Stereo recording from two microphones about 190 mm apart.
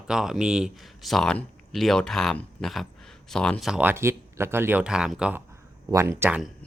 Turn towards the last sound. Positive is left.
turn(degrees=-15)  # may be behind; listen again after turning